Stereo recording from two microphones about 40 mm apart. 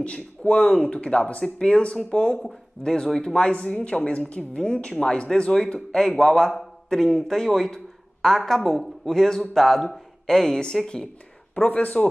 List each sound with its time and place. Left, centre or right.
0.0 s speech: left
6.1 s a man's voice: centre
11.5 s speech: left